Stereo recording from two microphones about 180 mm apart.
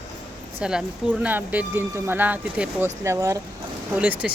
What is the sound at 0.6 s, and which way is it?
Speech, 5° right (ahead or behind).